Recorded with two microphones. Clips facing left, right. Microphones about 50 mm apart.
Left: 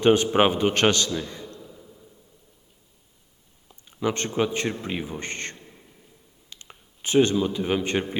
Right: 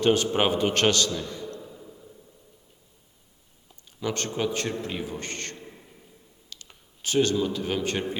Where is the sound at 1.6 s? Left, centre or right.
Centre.